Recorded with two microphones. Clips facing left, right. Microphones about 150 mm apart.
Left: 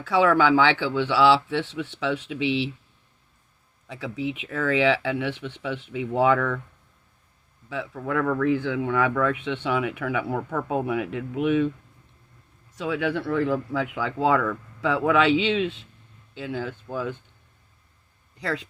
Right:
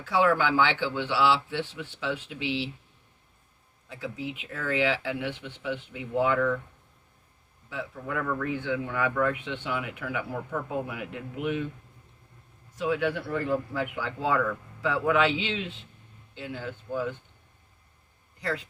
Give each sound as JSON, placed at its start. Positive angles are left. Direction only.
{"t": 0.0, "sound": "speech", "side_deg": 90}
{"t": 3.8, "sound": "speech", "side_deg": 80}
{"t": 4.5, "sound": "speech", "side_deg": 90}
{"t": 7.7, "sound": "speech", "side_deg": 90}
{"t": 12.7, "sound": "speech", "side_deg": 90}
{"t": 18.3, "sound": "speech", "side_deg": 90}